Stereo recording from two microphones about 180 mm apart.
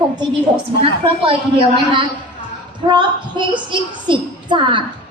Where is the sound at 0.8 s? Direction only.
30° right (ahead or behind).